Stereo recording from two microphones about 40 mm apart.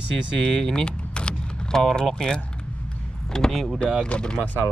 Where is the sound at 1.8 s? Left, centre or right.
Centre.